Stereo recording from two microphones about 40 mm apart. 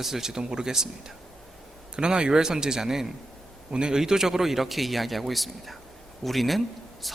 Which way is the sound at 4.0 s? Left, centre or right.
Centre.